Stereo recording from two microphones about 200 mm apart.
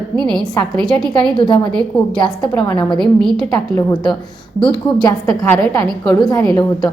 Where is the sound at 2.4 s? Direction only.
20° left (ahead or behind).